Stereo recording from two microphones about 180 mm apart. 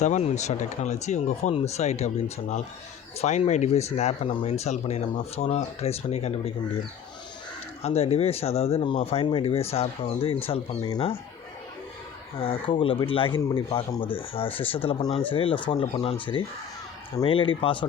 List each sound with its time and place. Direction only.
0.0 s speech: 40° left (ahead or behind)
7.8 s speech: 35° left (ahead or behind)
12.4 s speech: 30° left (ahead or behind)